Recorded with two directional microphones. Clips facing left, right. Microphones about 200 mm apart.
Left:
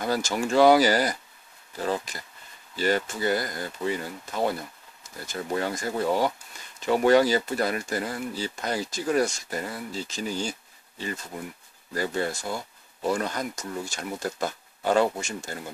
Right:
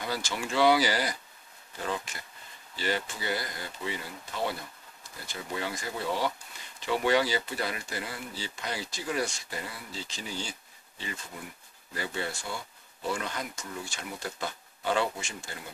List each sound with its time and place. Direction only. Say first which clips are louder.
0.0 s speech: left 7 dB; 45° left (ahead or behind)
11.9 s speech: left 7 dB; 40° left (ahead or behind)